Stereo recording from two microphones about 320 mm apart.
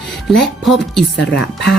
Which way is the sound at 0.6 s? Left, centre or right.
Centre.